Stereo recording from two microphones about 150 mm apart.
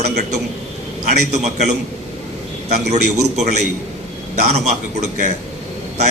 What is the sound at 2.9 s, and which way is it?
A man's voice, 50° right (ahead or behind).